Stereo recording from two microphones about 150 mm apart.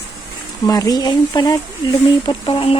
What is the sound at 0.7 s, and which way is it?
Speech, 25° left (ahead or behind).